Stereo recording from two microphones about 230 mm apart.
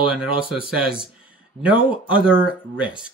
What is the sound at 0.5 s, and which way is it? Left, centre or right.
Speech, centre.